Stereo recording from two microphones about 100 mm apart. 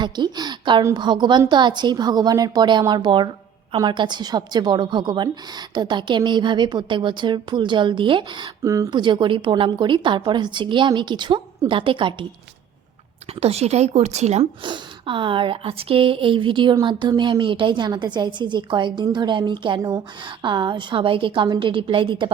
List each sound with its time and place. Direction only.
0.0 s a woman's voice: 45° right (ahead or behind)
8.6 s speech: 35° right (ahead or behind)
8.9 s a woman's voice: 50° right (ahead or behind)
13.4 s speech: 90° right
14.6 s a woman's voice: 55° right (ahead or behind)